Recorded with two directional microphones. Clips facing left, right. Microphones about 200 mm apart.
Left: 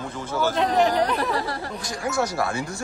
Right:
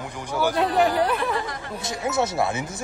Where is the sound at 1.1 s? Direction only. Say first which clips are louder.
Left 1 dB; 35° left (ahead or behind).